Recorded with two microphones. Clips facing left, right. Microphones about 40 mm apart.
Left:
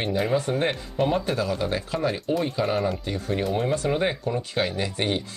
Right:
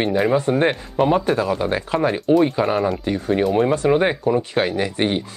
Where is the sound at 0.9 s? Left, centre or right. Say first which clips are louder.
Right 6 dB; centre.